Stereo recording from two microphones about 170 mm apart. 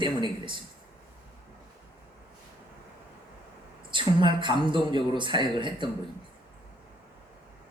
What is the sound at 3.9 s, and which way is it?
A man's voice, 30° right (ahead or behind).